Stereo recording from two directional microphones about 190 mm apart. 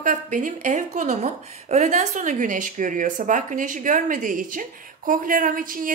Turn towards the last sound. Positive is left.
turn(degrees=-45)  # may be behind; listen again after turning